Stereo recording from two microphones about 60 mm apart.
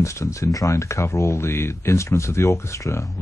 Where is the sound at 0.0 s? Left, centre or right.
Left.